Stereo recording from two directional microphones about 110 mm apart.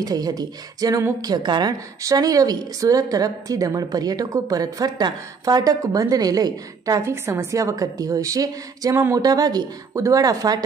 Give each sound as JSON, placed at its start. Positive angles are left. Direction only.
{"t": 0.0, "sound": "a woman's voice", "side_deg": -35}